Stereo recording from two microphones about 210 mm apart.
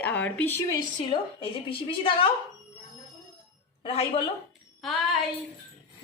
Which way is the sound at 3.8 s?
25° left (ahead or behind).